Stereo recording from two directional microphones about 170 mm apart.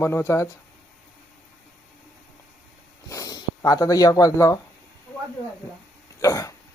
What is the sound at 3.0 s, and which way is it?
Speech, 20° left (ahead or behind).